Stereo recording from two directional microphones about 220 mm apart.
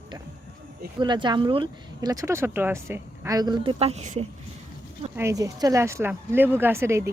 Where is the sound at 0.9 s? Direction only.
20° right (ahead or behind).